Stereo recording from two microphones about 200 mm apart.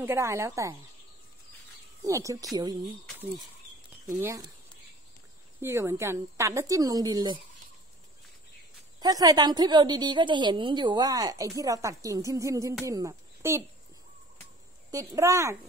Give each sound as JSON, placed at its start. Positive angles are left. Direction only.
{"t": 0.0, "sound": "a woman's voice", "side_deg": -10}
{"t": 2.0, "sound": "a woman's voice", "side_deg": -15}
{"t": 4.2, "sound": "a woman's voice", "side_deg": -15}
{"t": 5.6, "sound": "a woman's voice", "side_deg": -15}
{"t": 9.0, "sound": "a woman's voice", "side_deg": -20}
{"t": 14.9, "sound": "a woman's voice", "side_deg": -15}